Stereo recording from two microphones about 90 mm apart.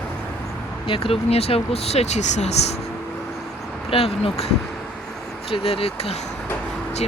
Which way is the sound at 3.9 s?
90° left.